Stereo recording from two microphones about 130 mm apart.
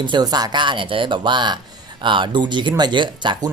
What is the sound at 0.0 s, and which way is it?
Speech, 35° right (ahead or behind).